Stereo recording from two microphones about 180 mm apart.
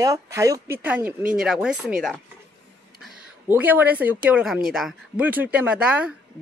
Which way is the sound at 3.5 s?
10° right (ahead or behind).